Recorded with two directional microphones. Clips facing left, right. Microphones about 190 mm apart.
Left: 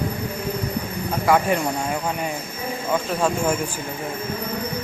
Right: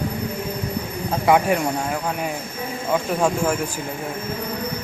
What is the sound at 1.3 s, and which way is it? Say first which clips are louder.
Speech: right 2 dB; 10° right (ahead or behind).